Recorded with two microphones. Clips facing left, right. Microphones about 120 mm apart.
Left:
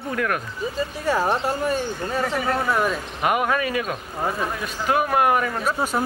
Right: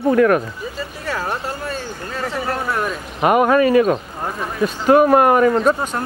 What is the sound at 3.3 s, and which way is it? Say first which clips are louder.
Speech: right 10 dB; 40° right (ahead or behind).